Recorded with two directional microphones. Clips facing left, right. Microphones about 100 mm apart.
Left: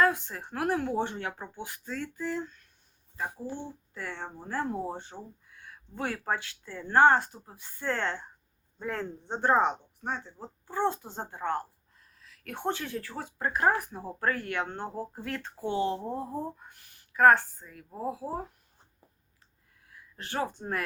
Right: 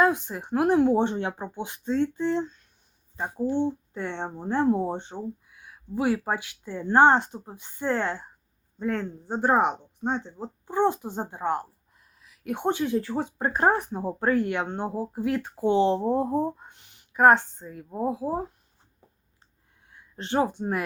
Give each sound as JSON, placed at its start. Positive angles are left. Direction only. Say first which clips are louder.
{"t": 0.0, "sound": "speech", "louder": "right 3 dB", "side_deg": -20}
{"t": 5.5, "sound": "speech", "louder": "right 10 dB", "side_deg": -10}
{"t": 8.8, "sound": "a man's voice", "louder": "right 6 dB", "side_deg": 0}
{"t": 9.3, "sound": "speech", "louder": "right 3 dB", "side_deg": -15}
{"t": 19.9, "sound": "speech", "louder": "right 9 dB", "side_deg": -25}